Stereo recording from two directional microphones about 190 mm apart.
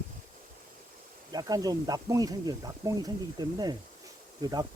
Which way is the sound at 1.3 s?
20° right (ahead or behind).